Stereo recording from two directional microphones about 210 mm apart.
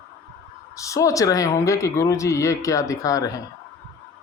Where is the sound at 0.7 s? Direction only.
15° left (ahead or behind).